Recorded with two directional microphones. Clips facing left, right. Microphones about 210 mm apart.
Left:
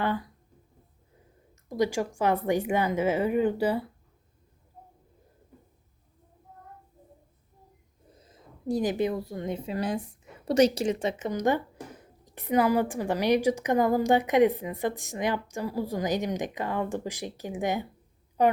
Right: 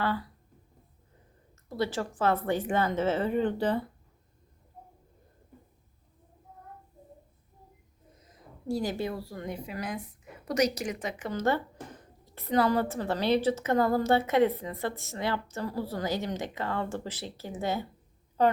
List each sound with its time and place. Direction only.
0.0 s speech: 15° left (ahead or behind)
1.7 s speech: 15° left (ahead or behind)
8.2 s a woman's voice: 25° left (ahead or behind)
11.3 s speech: 15° left (ahead or behind)